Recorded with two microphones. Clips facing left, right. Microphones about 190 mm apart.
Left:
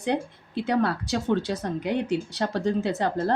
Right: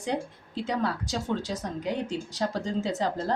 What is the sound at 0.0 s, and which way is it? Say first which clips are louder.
A woman's voice: left 4 dB; 65° left (ahead or behind).